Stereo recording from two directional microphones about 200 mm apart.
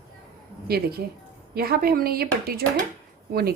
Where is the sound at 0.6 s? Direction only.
50° right (ahead or behind).